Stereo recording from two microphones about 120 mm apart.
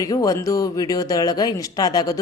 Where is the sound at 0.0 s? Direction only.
30° left (ahead or behind).